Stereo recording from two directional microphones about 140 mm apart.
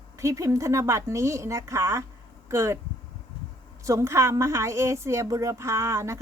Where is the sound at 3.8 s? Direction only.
20° right (ahead or behind).